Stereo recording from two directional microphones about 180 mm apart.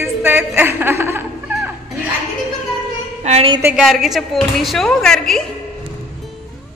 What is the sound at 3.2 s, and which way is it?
Speech, 40° right (ahead or behind).